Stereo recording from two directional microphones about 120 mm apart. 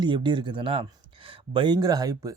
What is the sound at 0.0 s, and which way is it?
Speech, 40° right (ahead or behind).